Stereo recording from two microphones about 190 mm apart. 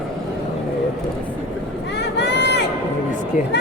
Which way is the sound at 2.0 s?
65° left (ahead or behind).